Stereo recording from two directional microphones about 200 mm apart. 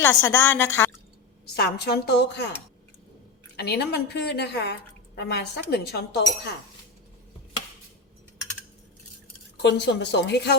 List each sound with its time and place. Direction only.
0.0 s a woman's voice: 10° left (ahead or behind)
1.5 s a woman's voice: 55° left (ahead or behind)
3.5 s a woman's voice: 55° left (ahead or behind)
9.6 s a woman's voice: 60° left (ahead or behind)